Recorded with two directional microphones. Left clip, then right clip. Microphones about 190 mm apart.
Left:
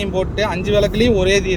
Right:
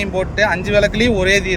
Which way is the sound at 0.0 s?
5° right (ahead or behind).